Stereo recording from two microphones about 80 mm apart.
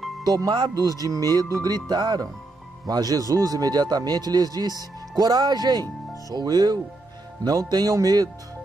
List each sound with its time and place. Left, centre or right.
0.2 s a man's voice: right